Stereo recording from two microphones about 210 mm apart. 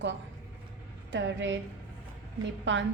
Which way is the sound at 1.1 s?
60° right (ahead or behind).